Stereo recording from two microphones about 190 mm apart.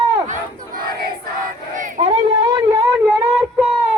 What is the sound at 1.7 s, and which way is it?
Crowd, 40° right (ahead or behind).